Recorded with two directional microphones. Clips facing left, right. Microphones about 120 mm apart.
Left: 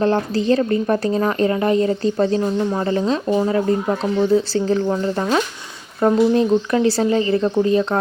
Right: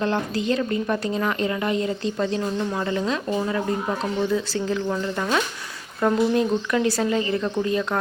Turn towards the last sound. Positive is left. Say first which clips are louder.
# left 7 dB
turn(degrees=30)  # may be behind; listen again after turning